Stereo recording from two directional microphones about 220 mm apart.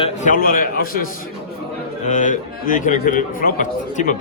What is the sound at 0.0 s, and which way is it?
A man's voice, 35° left (ahead or behind).